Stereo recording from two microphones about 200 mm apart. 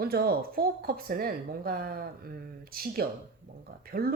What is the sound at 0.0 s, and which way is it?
Speech, 50° right (ahead or behind).